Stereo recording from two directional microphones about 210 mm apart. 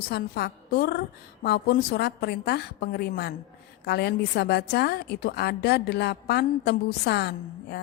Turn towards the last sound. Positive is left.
turn(degrees=50)  # may be behind; listen again after turning